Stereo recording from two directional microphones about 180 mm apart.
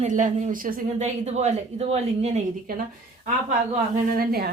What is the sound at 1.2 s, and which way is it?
Speech, 40° right (ahead or behind).